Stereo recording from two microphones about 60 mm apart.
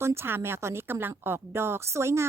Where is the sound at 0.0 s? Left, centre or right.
Right.